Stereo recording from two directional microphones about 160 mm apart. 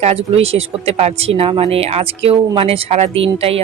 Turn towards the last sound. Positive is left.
turn(degrees=-40)  # may be behind; listen again after turning